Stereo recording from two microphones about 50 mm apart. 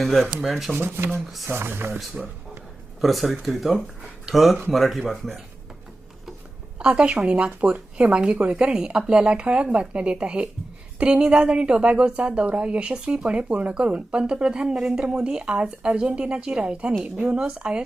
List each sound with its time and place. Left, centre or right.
0.0 s speech: centre
0.8 s speech: right
3.0 s speech: centre
6.7 s a woman's voice: centre
13.5 s a woman's voice: right